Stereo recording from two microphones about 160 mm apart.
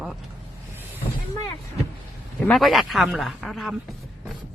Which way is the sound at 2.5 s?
Centre (ahead or behind).